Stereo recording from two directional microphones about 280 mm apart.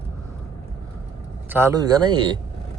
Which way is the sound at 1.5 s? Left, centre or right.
Centre.